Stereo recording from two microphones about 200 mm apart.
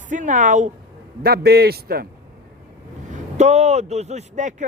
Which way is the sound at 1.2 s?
50° right (ahead or behind).